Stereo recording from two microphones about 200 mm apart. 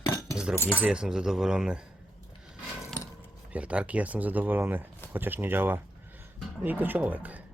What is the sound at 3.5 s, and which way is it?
Speech, 5° right (ahead or behind).